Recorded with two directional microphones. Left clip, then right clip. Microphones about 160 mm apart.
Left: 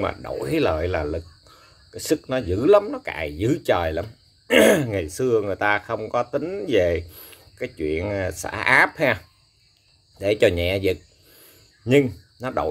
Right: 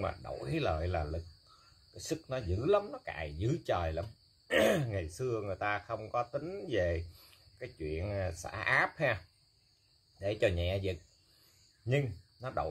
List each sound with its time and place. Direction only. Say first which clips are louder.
0.0 s speech: left 12 dB; 55° left (ahead or behind)